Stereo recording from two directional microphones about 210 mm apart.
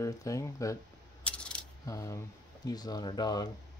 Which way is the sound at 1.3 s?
5° left (ahead or behind).